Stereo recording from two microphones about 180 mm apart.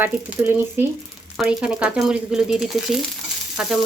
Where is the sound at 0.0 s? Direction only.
10° right (ahead or behind).